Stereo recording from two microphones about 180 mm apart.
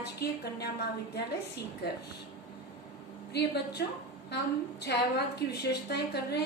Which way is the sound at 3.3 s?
65° left (ahead or behind).